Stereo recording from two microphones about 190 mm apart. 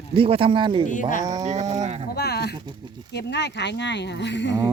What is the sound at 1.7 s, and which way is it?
Speech, 35° right (ahead or behind).